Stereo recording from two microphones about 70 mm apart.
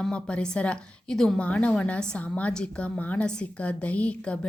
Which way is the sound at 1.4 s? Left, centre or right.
Centre.